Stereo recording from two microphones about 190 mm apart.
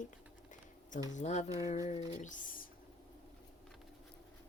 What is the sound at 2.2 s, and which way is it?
Speech, 40° left (ahead or behind).